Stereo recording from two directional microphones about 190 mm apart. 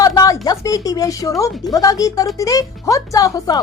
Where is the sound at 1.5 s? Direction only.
Centre (ahead or behind).